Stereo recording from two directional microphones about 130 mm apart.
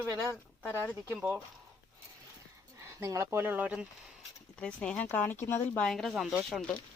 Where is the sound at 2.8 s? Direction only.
25° right (ahead or behind).